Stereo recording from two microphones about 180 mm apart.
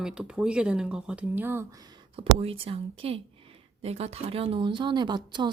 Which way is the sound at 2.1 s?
30° right (ahead or behind).